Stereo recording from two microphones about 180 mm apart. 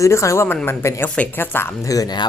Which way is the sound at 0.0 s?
15° left (ahead or behind).